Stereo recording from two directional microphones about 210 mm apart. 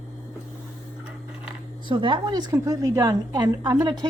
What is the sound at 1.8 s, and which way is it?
A woman's voice, 20° right (ahead or behind).